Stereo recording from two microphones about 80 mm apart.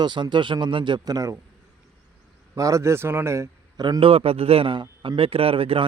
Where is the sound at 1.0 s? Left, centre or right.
Right.